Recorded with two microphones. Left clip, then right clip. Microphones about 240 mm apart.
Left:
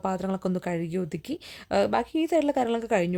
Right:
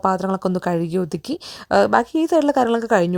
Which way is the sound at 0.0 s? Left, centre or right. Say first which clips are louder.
Right 9 dB; right.